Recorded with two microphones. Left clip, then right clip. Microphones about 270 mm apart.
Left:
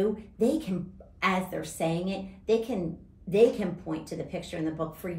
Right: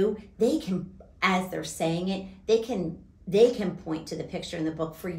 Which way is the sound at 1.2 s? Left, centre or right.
Centre.